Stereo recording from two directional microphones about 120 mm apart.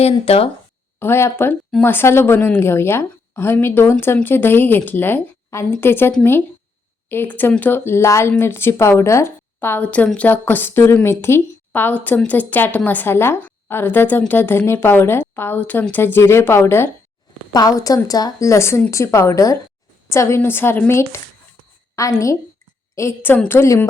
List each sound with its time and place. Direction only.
0.0 s speech: 55° left (ahead or behind)
0.9 s a woman's voice: 20° left (ahead or behind)
17.5 s speech: 30° left (ahead or behind)